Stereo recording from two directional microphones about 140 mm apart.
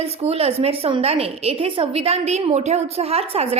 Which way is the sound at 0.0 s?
45° right (ahead or behind).